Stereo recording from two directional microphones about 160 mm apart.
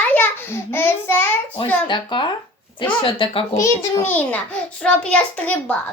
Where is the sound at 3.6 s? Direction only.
15° left (ahead or behind).